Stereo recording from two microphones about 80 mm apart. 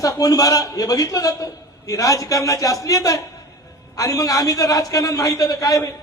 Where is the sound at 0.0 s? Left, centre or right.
Left.